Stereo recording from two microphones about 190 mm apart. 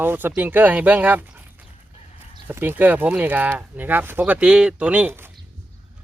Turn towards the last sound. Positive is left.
turn(degrees=-10)  # may be behind; listen again after turning